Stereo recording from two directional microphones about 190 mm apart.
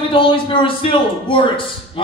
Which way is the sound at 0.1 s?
25° left (ahead or behind).